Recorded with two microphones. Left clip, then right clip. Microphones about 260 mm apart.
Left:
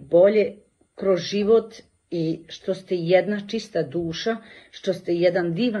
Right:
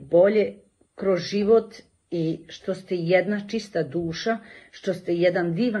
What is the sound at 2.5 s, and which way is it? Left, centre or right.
Speech, centre.